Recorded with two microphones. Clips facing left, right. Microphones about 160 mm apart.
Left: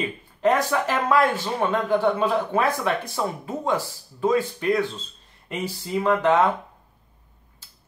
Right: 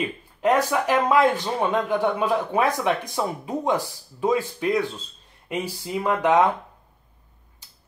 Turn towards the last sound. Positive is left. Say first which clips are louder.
# even
turn(degrees=-10)  # may be behind; listen again after turning